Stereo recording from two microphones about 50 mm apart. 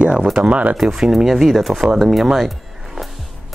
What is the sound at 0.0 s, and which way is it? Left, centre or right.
Speech, right.